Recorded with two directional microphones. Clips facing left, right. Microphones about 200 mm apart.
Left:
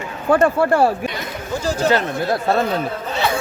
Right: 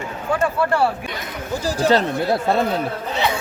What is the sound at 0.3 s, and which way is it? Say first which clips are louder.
Speech: left 5 dB; 50° left (ahead or behind).